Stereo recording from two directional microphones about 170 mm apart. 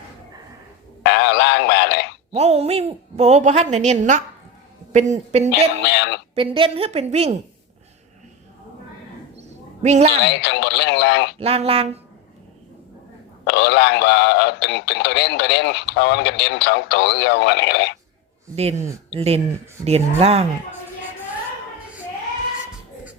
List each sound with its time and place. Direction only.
1.0 s a sound: 80° left
2.3 s a woman's voice: 40° right (ahead or behind)
5.8 s speech: 85° left
6.3 s a woman's voice: 30° right (ahead or behind)
9.4 s a sound: 40° right (ahead or behind)
10.2 s speech: 80° left
11.3 s a woman's voice: 35° right (ahead or behind)
13.4 s speech: 80° left
19.1 s a woman's voice: 35° right (ahead or behind)